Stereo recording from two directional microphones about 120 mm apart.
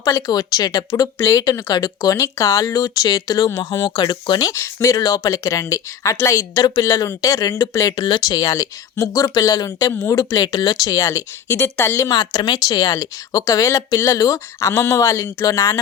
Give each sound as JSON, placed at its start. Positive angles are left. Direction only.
{"t": 0.0, "sound": "speech", "side_deg": 35}
{"t": 12.1, "sound": "speech", "side_deg": 35}